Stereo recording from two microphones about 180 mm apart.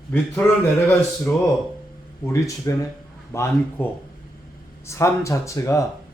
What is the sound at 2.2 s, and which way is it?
Speech, 15° left (ahead or behind).